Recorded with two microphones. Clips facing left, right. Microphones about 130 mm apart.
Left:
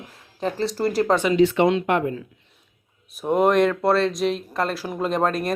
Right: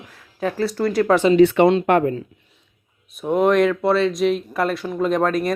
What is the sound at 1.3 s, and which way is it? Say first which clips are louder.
Speech: right 4 dB; 60° right (ahead or behind).